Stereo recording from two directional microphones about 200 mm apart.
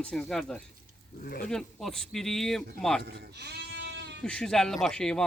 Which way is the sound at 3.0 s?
55° right (ahead or behind).